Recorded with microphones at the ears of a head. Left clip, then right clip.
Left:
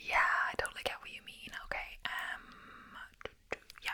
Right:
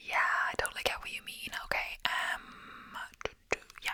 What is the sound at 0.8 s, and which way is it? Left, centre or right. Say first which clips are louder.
Whispering: right 6 dB; right.